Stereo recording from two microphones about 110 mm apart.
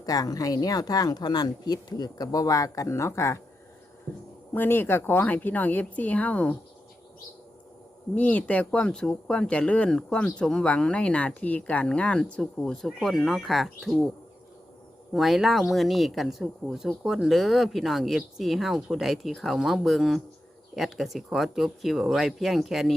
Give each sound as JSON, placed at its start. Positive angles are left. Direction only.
{"t": 0.0, "sound": "speech", "side_deg": 35}
{"t": 4.5, "sound": "speech", "side_deg": 20}
{"t": 8.1, "sound": "speech", "side_deg": 15}
{"t": 15.1, "sound": "speech", "side_deg": 0}